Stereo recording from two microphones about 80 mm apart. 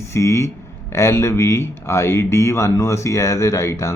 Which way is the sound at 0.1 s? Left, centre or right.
Left.